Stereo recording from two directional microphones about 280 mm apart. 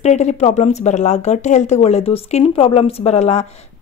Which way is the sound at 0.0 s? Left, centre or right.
Left.